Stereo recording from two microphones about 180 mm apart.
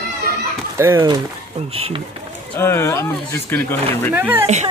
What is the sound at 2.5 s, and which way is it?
Speech, 15° left (ahead or behind).